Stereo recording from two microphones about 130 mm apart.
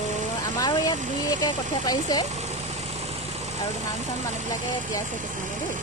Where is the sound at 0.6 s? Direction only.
30° left (ahead or behind).